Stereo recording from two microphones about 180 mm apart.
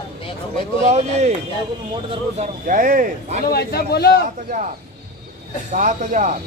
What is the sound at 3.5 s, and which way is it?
Speech, 60° left (ahead or behind).